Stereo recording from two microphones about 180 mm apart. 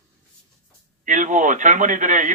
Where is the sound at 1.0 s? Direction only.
45° right (ahead or behind).